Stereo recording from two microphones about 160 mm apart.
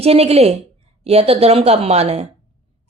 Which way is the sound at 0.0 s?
40° right (ahead or behind).